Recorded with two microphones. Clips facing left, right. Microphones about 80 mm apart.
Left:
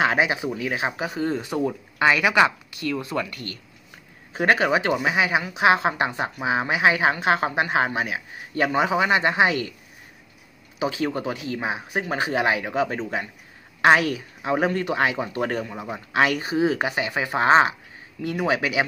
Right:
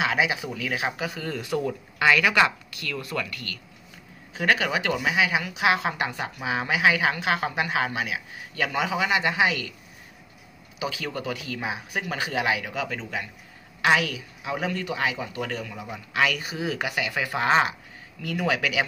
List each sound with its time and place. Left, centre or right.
0.0 s a woman's voice: left
10.8 s a woman's voice: left